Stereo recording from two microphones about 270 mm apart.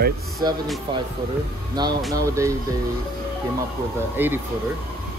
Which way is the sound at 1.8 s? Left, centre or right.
Centre.